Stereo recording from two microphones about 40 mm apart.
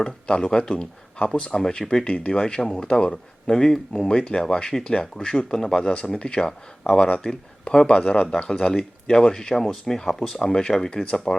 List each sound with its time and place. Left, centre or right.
0.0 s speech: left